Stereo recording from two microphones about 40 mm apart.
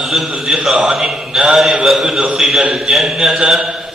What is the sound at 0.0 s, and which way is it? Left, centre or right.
Speech, centre.